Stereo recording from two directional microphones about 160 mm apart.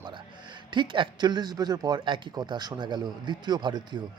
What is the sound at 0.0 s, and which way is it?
A man's voice, 30° right (ahead or behind).